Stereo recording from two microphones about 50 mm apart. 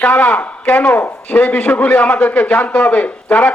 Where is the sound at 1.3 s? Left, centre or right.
Left.